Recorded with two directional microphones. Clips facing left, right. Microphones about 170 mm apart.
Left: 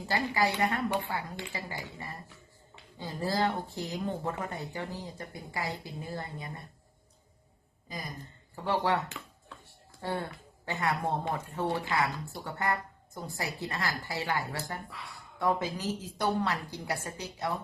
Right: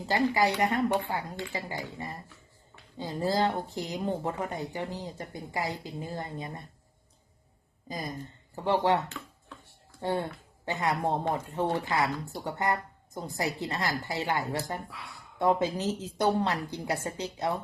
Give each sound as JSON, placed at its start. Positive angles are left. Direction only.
{"t": 0.1, "sound": "speech", "side_deg": -20}
{"t": 7.9, "sound": "speech", "side_deg": -25}
{"t": 10.0, "sound": "speech", "side_deg": -20}